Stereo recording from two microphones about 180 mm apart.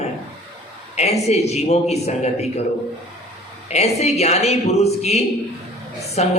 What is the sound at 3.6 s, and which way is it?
A man's voice, 35° left (ahead or behind).